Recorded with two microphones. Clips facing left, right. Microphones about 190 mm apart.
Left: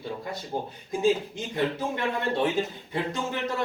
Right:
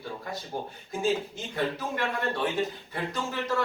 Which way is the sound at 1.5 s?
20° left (ahead or behind).